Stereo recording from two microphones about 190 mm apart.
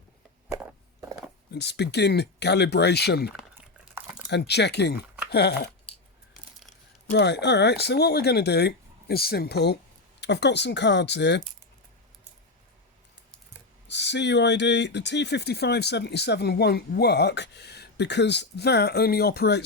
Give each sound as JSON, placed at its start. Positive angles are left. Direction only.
{"t": 0.4, "sound": "a sound", "side_deg": -10}
{"t": 1.5, "sound": "speech", "side_deg": 60}
{"t": 3.9, "sound": "crumpling", "side_deg": -5}
{"t": 4.3, "sound": "speech", "side_deg": 60}
{"t": 7.1, "sound": "speech", "side_deg": 65}
{"t": 13.8, "sound": "speech", "side_deg": 65}